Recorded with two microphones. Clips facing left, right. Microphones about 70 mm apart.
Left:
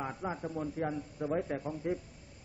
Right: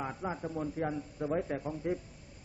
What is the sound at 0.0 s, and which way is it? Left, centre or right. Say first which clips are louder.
Speech: even; centre.